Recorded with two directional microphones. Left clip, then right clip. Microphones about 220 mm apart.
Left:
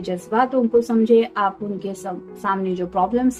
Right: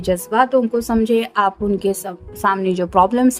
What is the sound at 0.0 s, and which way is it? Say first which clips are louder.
A woman's voice: right 4 dB; 55° right (ahead or behind).